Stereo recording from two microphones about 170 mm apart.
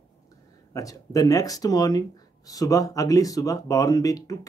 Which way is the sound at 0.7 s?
20° left (ahead or behind).